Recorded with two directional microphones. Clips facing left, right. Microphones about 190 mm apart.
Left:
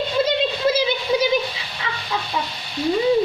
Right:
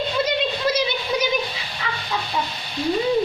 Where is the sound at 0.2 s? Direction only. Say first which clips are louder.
Left 4 dB; 30° left (ahead or behind).